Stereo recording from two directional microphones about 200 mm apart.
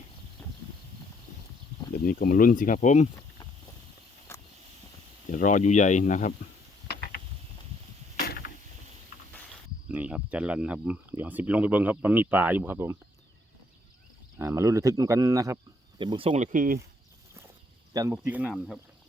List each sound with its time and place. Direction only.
2.0 s speech: 45° left (ahead or behind)
4.3 s vehicle: 10° left (ahead or behind)
5.3 s speech: 40° left (ahead or behind)
6.8 s a sound: 50° left (ahead or behind)
9.9 s speech: 5° right (ahead or behind)
14.3 s speech: 15° right (ahead or behind)
16.3 s speech: 40° right (ahead or behind)
17.9 s speech: 15° right (ahead or behind)